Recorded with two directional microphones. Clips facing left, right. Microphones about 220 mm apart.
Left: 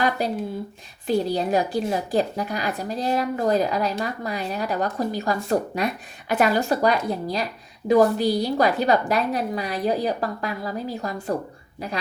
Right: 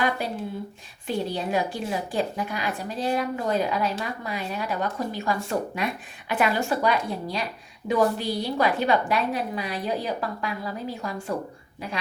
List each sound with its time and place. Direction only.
1.0 s a woman's voice: 40° left (ahead or behind)